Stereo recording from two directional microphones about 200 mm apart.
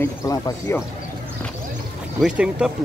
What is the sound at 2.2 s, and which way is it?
Speech, 5° right (ahead or behind).